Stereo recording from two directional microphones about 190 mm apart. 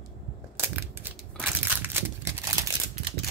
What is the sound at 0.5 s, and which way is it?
Crushing, 10° right (ahead or behind).